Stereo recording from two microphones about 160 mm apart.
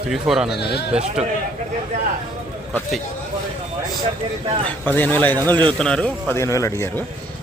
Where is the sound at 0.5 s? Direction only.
90° left.